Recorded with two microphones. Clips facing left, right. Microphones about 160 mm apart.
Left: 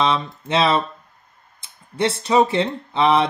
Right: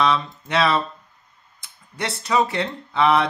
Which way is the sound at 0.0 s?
25° left (ahead or behind).